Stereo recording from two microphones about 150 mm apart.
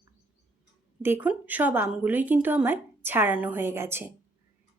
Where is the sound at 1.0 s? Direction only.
10° right (ahead or behind).